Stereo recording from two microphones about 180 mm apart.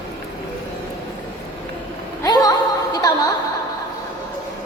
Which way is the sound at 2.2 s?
20° left (ahead or behind).